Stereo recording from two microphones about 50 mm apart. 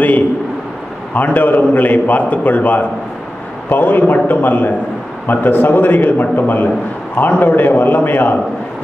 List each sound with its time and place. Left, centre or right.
1.1 s a man's voice: left